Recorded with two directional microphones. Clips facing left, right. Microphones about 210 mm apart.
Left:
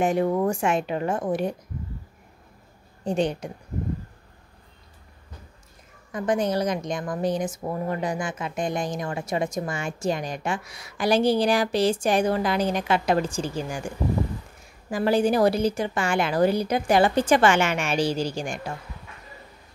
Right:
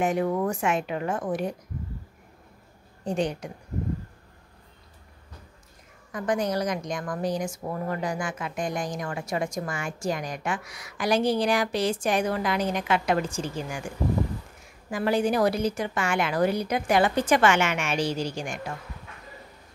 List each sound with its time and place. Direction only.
0.0 s a woman's voice: 30° left (ahead or behind)
3.1 s a woman's voice: 25° left (ahead or behind)
6.1 s a woman's voice: 25° left (ahead or behind)
14.9 s a woman's voice: 30° left (ahead or behind)